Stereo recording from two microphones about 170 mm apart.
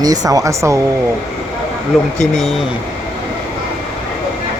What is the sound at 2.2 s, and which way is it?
Speech, centre (ahead or behind).